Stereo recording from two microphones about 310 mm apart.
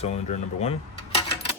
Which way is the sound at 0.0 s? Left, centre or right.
Left.